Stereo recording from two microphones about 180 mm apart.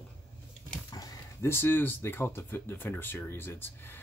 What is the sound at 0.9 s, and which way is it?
Speech, 20° left (ahead or behind).